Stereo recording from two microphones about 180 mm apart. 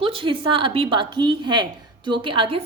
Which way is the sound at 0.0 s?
30° right (ahead or behind).